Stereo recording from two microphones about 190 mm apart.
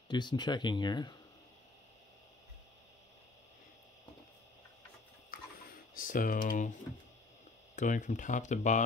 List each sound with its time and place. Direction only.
0.1 s speech: 25° left (ahead or behind)
5.9 s speech: 45° left (ahead or behind)
7.7 s speech: 40° left (ahead or behind)